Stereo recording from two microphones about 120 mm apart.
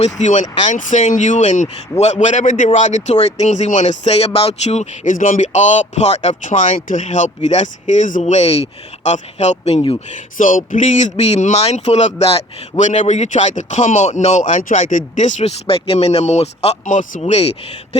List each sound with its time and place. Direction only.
0.0 s speech: 75° left (ahead or behind); by 8.6 s 60° left (ahead or behind)
9.0 s speech: 75° left (ahead or behind)
10.3 s speech: 90° left
15.6 s speech: 55° left (ahead or behind)